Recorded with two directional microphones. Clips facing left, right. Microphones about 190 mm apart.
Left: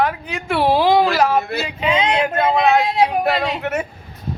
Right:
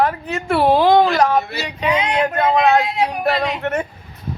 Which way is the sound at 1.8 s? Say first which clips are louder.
Even; 25° left (ahead or behind).